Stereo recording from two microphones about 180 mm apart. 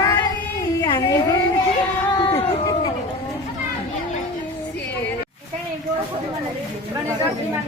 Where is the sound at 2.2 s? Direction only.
30° left (ahead or behind).